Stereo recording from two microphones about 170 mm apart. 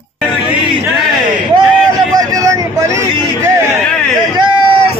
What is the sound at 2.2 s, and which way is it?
Vehicle, 20° right (ahead or behind).